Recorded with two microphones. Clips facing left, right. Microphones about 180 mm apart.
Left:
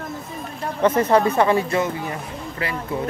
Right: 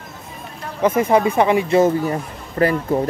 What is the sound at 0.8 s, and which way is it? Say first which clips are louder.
Speech: right 1 dB; 10° right (ahead or behind).